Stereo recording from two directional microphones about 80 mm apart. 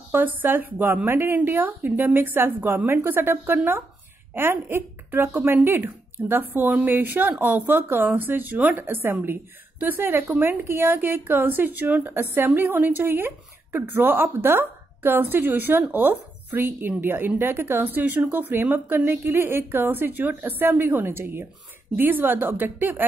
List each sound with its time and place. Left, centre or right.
0.1 s a woman's voice: right